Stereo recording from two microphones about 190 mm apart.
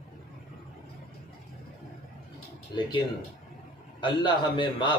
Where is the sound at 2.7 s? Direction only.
25° left (ahead or behind).